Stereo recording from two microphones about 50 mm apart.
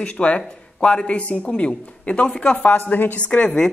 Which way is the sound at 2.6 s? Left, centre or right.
Left.